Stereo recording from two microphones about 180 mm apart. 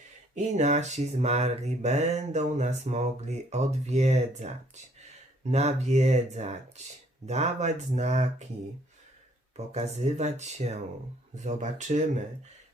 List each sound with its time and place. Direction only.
0.3 s speech: 40° right (ahead or behind)
9.6 s speech: 35° right (ahead or behind)